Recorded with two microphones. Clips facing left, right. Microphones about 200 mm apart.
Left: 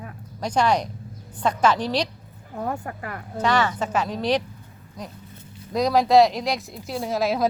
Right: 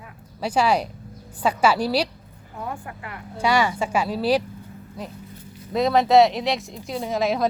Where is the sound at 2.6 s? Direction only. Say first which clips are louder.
Left 4 dB; 45° left (ahead or behind).